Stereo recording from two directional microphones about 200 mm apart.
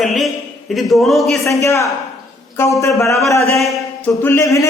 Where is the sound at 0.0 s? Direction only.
Centre (ahead or behind).